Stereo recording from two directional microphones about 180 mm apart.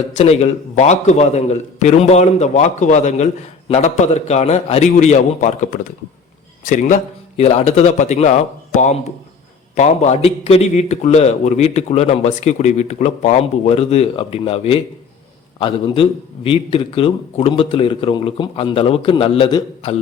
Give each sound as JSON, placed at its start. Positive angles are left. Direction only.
{"t": 0.2, "sound": "a man's voice", "side_deg": 35}